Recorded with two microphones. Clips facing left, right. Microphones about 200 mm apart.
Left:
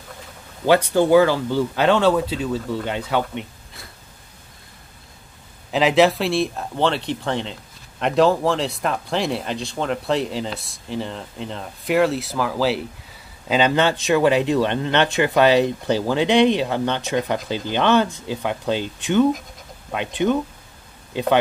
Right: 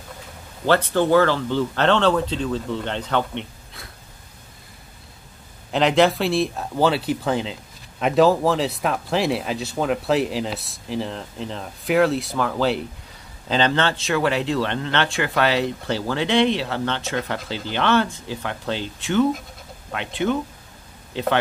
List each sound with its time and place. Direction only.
0.7 s speech: 10° left (ahead or behind)
5.7 s speech: centre (ahead or behind)